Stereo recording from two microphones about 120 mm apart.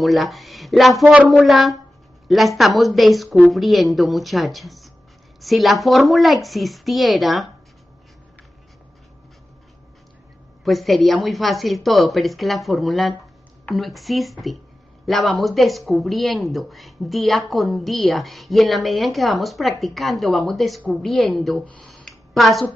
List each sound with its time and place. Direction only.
0.0 s speech: centre (ahead or behind)
10.6 s speech: centre (ahead or behind)
21.6 s a sound: 10° left (ahead or behind)